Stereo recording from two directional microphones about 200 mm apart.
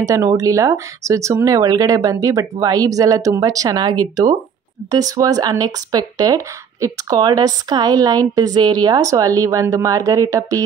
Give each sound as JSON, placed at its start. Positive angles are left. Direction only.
{"t": 0.0, "sound": "speech", "side_deg": -15}